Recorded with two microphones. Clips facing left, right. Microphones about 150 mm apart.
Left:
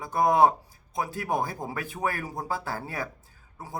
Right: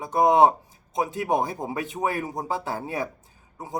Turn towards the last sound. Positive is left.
turn(degrees=-20)  # may be behind; listen again after turning